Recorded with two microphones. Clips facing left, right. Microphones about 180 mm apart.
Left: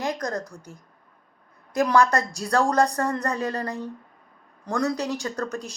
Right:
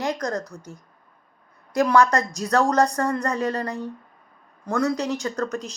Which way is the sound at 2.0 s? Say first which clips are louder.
Right 2 dB; 20° right (ahead or behind).